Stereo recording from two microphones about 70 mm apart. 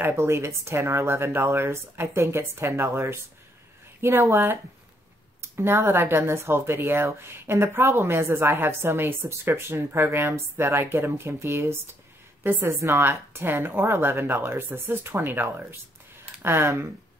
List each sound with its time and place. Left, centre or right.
0.0 s speech: right
5.6 s speech: right